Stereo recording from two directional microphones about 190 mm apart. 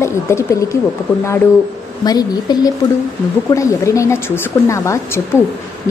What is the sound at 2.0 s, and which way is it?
A woman's voice, 20° left (ahead or behind).